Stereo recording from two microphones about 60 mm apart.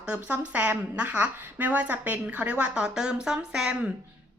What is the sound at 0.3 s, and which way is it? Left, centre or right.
A woman's voice, right.